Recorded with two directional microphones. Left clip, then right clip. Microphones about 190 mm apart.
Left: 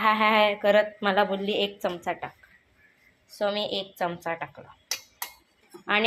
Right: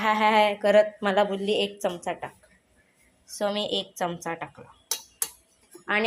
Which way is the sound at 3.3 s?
10° right (ahead or behind).